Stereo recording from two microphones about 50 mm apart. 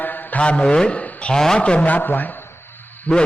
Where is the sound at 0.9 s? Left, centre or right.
Left.